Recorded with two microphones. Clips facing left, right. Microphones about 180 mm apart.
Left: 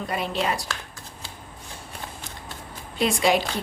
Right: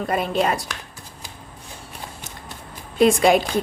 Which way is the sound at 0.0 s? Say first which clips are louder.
Right 5 dB; 50° right (ahead or behind).